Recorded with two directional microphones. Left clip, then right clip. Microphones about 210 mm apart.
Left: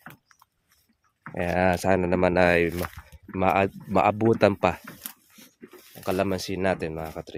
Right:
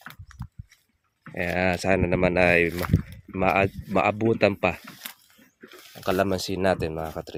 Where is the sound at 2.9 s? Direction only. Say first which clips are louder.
Right 16 dB; 20° right (ahead or behind).